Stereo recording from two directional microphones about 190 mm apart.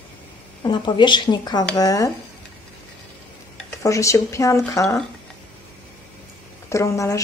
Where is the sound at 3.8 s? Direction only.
15° left (ahead or behind).